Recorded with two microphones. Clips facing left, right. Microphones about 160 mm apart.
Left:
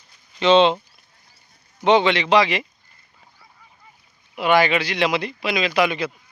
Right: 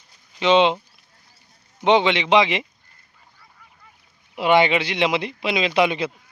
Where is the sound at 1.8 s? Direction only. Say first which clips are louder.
Left 1 dB; 20° right (ahead or behind).